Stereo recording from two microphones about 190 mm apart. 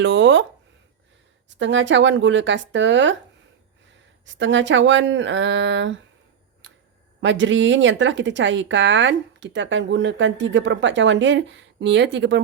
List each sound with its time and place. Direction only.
0.0 s speech: 70° right (ahead or behind)
1.5 s speech: 75° right (ahead or behind)
4.3 s speech: 75° right (ahead or behind)
7.2 s speech: 75° right (ahead or behind)